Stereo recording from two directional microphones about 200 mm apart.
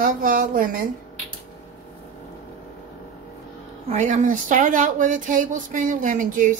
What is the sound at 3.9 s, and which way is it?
Speech, 35° right (ahead or behind).